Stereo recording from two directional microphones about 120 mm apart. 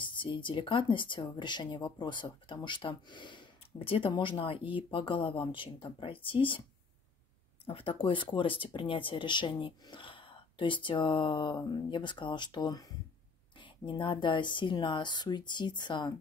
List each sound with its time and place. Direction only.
0.0 s speech: 40° left (ahead or behind)
7.6 s speech: 50° left (ahead or behind)